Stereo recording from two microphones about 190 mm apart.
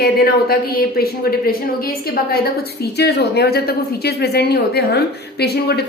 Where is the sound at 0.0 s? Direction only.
50° left (ahead or behind).